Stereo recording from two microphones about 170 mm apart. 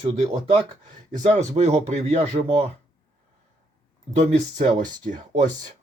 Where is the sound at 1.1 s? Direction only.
45° right (ahead or behind).